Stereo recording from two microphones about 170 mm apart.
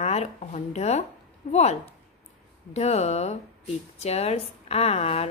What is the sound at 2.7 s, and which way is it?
Speech, 40° left (ahead or behind).